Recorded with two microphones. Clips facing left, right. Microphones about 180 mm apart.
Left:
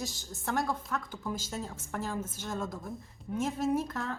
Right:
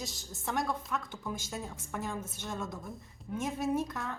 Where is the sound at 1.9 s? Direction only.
5° left (ahead or behind).